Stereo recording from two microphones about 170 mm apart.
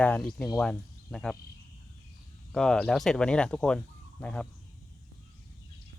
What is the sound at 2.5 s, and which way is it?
Speech, 5° left (ahead or behind).